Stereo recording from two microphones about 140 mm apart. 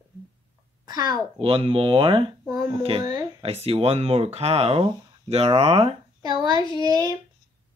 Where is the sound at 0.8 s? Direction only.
30° right (ahead or behind); by 5.9 s 45° right (ahead or behind).